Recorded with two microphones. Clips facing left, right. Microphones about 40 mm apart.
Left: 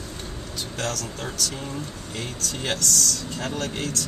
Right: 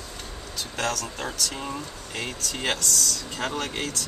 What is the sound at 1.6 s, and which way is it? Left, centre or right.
Speech, right.